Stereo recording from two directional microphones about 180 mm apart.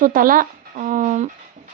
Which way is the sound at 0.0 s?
50° right (ahead or behind).